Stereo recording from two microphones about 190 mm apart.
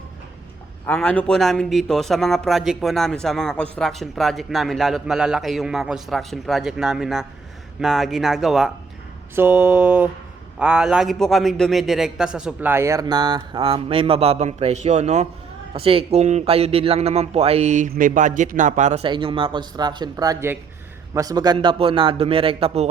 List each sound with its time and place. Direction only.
0.9 s a man's voice: 5° left (ahead or behind); by 22.9 s 30° right (ahead or behind)